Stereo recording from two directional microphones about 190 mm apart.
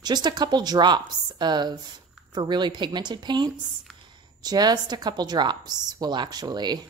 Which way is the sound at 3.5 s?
Centre (ahead or behind).